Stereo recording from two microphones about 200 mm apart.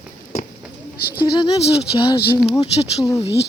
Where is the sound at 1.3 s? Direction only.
30° left (ahead or behind).